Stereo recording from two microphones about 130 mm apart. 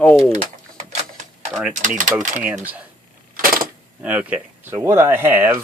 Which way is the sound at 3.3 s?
90° right.